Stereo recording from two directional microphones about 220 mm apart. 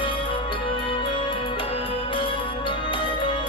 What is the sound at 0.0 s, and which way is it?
Music, 25° left (ahead or behind).